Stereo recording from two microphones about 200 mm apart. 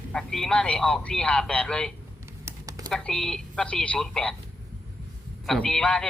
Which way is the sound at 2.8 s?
5° left (ahead or behind).